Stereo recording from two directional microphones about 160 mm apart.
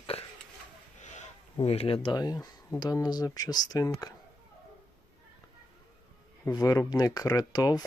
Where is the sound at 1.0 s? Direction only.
45° left (ahead or behind).